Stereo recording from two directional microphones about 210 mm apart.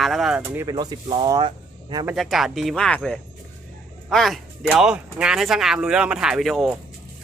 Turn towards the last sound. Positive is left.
turn(degrees=0)  # may be behind; listen again after turning